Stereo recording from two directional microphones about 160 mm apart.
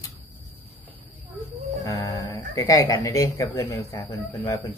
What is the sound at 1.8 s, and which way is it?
Speech, 25° left (ahead or behind).